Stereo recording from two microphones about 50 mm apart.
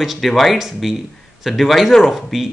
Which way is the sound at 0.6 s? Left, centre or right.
Centre.